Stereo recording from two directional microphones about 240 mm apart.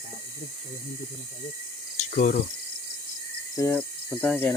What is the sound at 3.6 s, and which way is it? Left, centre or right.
Speech, centre.